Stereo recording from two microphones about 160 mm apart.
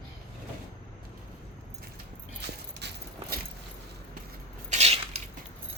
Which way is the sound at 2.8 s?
90° right.